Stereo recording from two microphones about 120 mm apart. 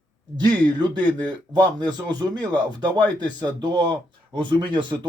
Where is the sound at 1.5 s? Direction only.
35° right (ahead or behind).